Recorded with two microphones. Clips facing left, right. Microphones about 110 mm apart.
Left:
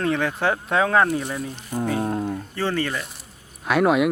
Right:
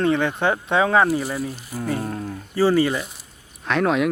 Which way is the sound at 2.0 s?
30° left (ahead or behind).